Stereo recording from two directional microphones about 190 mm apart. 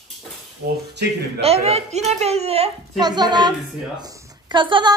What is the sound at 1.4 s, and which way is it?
A woman's voice, 35° right (ahead or behind).